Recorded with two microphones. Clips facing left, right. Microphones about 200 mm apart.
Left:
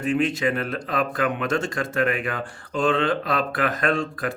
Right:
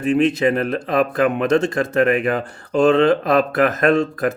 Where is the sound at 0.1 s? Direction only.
40° right (ahead or behind).